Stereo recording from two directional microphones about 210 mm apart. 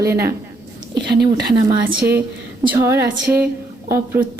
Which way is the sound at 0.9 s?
50° right (ahead or behind).